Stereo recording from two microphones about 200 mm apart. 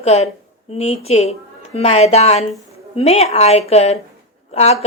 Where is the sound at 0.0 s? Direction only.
30° left (ahead or behind).